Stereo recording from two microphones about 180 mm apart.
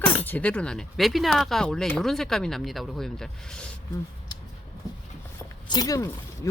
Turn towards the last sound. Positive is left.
turn(degrees=20)  # may be behind; listen again after turning